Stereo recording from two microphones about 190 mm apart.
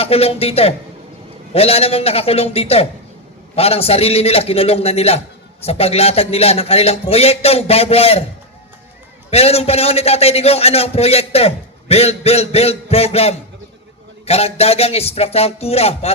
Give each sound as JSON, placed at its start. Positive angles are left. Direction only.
{"t": 0.0, "sound": "a man's voice", "side_deg": 30}
{"t": 9.3, "sound": "a man's voice", "side_deg": 30}